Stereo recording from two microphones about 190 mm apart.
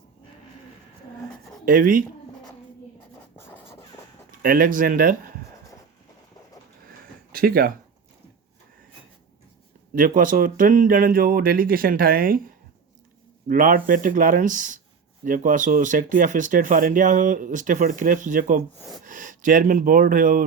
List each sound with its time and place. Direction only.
1.6 s speech: 45° right (ahead or behind)
3.3 s a sound: 10° left (ahead or behind)
4.4 s speech: 50° right (ahead or behind)
7.3 s speech: 50° right (ahead or behind)
9.9 s speech: 45° right (ahead or behind)
13.5 s speech: 45° right (ahead or behind)